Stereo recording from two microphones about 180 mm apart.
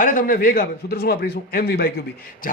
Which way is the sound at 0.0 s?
50° left (ahead or behind).